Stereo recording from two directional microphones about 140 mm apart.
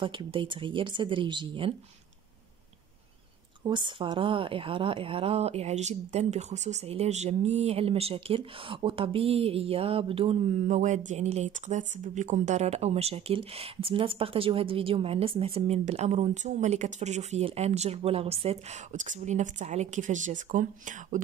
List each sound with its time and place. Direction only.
0.0 s speech: 35° right (ahead or behind)
3.6 s a woman's voice: 35° right (ahead or behind); by 21.2 s 65° right (ahead or behind)